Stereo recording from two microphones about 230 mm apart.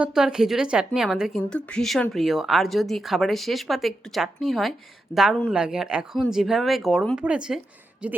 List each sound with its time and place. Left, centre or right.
0.0 s a woman's voice: centre